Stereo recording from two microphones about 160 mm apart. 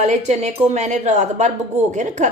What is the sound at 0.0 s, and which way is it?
Speech, 45° right (ahead or behind).